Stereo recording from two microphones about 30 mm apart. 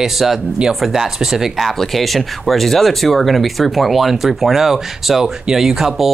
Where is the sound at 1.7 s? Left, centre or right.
Centre.